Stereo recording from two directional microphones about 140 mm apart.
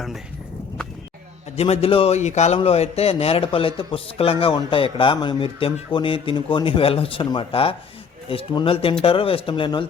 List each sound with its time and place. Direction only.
1.5 s a man's voice: 45° left (ahead or behind)